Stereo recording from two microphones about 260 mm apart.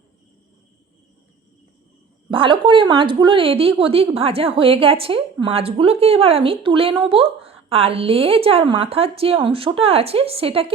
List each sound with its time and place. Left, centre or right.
2.3 s a woman's voice: centre